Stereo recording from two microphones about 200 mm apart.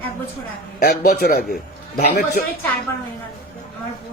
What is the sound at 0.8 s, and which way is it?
A man's voice, 50° left (ahead or behind).